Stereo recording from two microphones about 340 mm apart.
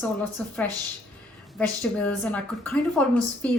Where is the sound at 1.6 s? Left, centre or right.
Centre.